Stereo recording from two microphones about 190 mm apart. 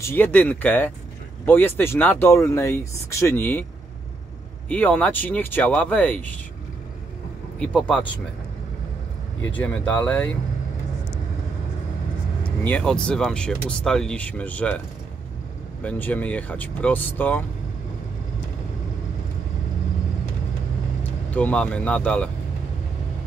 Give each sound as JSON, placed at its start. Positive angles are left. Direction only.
{"t": 0.0, "sound": "speech", "side_deg": 10}
{"t": 4.6, "sound": "speech", "side_deg": 5}
{"t": 7.5, "sound": "speech", "side_deg": 5}
{"t": 9.5, "sound": "speech", "side_deg": 10}
{"t": 12.4, "sound": "speech", "side_deg": 5}
{"t": 15.8, "sound": "speech", "side_deg": 10}
{"t": 21.0, "sound": "speech", "side_deg": 10}